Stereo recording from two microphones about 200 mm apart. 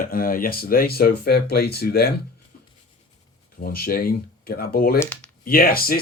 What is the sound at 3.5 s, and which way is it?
Speech, 50° left (ahead or behind).